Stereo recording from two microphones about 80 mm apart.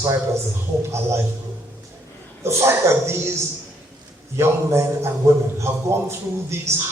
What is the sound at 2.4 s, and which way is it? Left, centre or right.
Speech, right.